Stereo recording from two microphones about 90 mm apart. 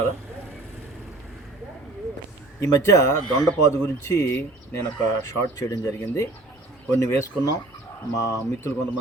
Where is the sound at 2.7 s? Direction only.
35° left (ahead or behind).